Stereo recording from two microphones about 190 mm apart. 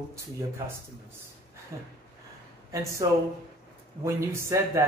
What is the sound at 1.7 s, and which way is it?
Speech, 15° right (ahead or behind).